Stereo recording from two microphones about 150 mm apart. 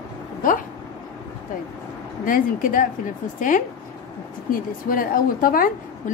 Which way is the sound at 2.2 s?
65° left (ahead or behind).